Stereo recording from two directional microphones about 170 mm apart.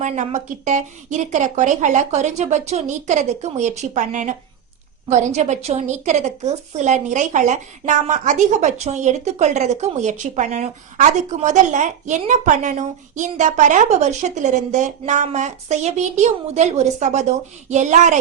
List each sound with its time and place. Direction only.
0.0 s a woman's voice: 45° right (ahead or behind)